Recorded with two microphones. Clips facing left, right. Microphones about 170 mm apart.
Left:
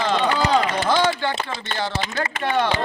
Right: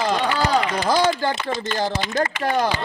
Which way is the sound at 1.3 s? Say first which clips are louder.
Right 3 dB; 35° left (ahead or behind).